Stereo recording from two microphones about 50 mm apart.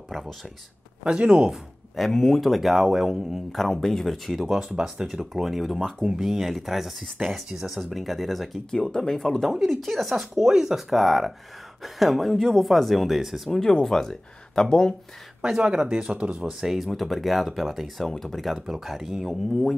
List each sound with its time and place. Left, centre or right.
1.0 s speech: centre
1.5 s speech: centre
3.5 s speech: centre
5.8 s speech: centre
6.0 s speech: centre
8.9 s speech: centre
13.5 s speech: centre
15.4 s speech: centre
16.6 s speech: centre
18.0 s speech: centre